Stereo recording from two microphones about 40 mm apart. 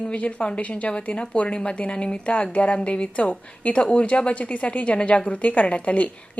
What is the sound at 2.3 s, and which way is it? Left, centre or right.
A woman's voice, left.